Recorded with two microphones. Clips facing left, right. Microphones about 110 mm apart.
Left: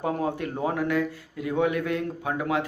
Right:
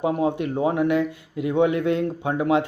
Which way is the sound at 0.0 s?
20° right (ahead or behind).